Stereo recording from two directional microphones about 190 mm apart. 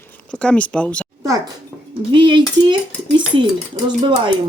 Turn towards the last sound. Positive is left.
turn(degrees=-25)  # may be behind; listen again after turning